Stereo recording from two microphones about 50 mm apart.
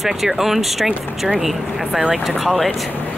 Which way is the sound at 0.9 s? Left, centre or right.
Centre.